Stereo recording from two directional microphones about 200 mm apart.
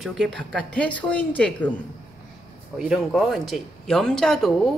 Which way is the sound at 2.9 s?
Centre (ahead or behind).